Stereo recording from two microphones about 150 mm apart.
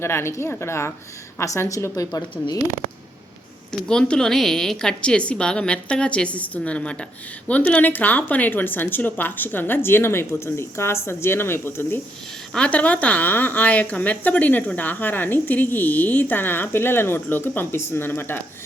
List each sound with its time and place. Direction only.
0.0 s a woman's voice: 15° left (ahead or behind)
3.7 s a woman's voice: 5° left (ahead or behind)